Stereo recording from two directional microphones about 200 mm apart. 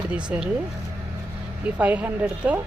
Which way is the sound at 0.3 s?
5° right (ahead or behind).